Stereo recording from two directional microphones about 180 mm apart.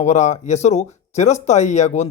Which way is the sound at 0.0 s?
40° left (ahead or behind).